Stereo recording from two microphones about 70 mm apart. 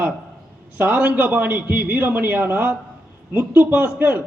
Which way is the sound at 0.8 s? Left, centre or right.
Right.